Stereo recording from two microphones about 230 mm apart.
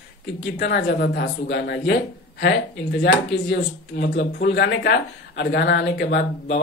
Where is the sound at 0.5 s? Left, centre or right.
Left.